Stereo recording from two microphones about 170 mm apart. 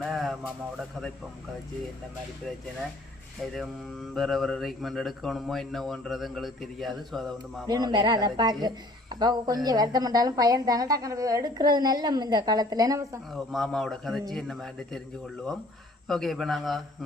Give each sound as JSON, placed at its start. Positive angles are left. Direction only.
{"t": 0.0, "sound": "a sound", "side_deg": 0}
{"t": 3.5, "sound": "speech", "side_deg": 0}
{"t": 7.7, "sound": "a woman's voice", "side_deg": -25}
{"t": 13.3, "sound": "speech", "side_deg": 0}
{"t": 16.0, "sound": "speech", "side_deg": 0}